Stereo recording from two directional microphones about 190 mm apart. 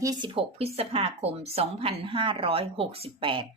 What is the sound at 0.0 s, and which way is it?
Speech, 20° right (ahead or behind).